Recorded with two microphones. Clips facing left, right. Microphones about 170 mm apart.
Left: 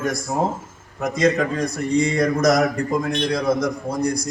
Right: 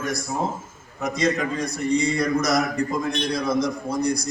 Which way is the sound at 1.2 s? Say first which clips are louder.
Left 4 dB; 50° left (ahead or behind).